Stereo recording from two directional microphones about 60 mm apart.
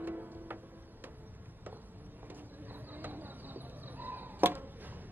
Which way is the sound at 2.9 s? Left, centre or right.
Right.